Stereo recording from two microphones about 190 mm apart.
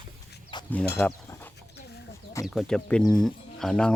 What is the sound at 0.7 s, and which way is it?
Speech, 10° left (ahead or behind).